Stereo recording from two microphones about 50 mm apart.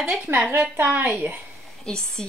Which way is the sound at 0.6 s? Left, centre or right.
Right.